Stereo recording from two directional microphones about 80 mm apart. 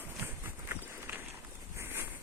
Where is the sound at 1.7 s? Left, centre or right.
Right.